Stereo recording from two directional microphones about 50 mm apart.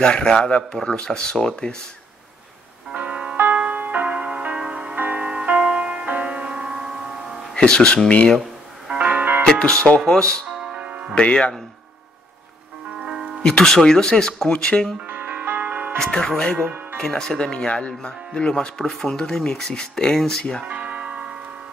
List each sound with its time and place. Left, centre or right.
0.0 s speech: centre
2.9 s music: right
5.3 s music: centre
7.5 s speech: centre
8.9 s music: right
9.4 s speech: centre
10.8 s music: right
11.1 s speech: left
13.0 s music: centre
13.4 s speech: centre
15.0 s music: right
16.0 s speech: centre
20.6 s music: right